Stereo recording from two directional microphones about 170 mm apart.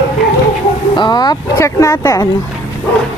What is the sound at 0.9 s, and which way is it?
Speech, 25° left (ahead or behind).